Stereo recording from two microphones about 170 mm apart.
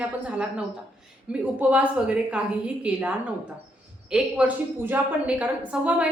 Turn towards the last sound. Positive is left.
turn(degrees=-5)  # may be behind; listen again after turning